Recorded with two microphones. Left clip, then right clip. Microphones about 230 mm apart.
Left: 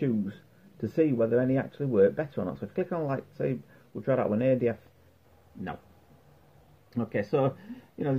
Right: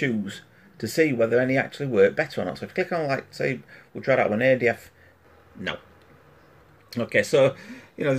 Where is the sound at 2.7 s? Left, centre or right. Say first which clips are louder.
Right 6 dB; centre.